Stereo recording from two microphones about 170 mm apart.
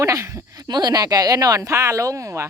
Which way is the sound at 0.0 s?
15° right (ahead or behind).